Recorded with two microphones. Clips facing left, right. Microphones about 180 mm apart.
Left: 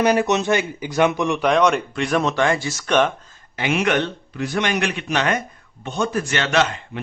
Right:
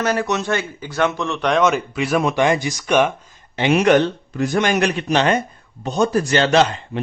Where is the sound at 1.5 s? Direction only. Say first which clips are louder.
Right 1 dB; centre (ahead or behind).